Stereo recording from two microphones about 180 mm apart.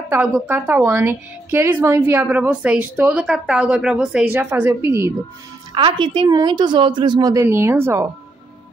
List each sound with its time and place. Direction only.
0.1 s a woman's voice: 10° right (ahead or behind)
5.8 s a woman's voice: 25° right (ahead or behind)